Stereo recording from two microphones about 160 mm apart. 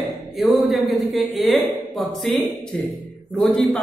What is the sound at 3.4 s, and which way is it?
Speech, 5° left (ahead or behind).